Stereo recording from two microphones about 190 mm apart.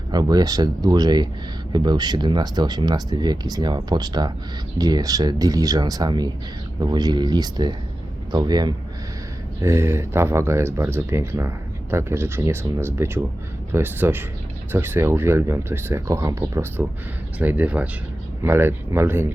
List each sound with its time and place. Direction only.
0.1 s speech: 20° right (ahead or behind)